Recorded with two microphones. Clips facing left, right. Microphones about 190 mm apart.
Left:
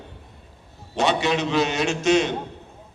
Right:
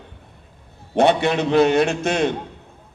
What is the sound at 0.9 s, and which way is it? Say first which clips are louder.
A man's voice: right 5 dB; 55° right (ahead or behind).